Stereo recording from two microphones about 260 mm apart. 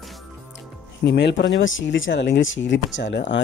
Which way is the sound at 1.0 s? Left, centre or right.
Left.